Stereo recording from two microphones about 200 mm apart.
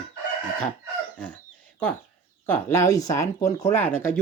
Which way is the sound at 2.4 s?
10° left (ahead or behind).